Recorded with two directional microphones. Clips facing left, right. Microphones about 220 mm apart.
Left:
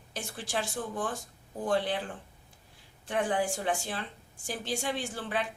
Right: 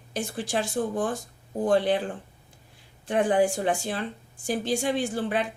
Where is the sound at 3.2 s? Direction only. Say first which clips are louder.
Right 8 dB; 40° right (ahead or behind).